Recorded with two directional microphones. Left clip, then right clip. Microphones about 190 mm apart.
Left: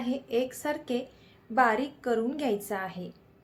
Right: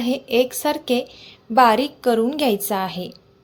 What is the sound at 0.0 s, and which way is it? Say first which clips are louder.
A woman's voice: right 10 dB; 45° right (ahead or behind).